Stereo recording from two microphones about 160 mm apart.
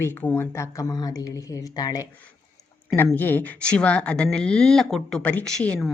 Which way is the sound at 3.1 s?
10° left (ahead or behind).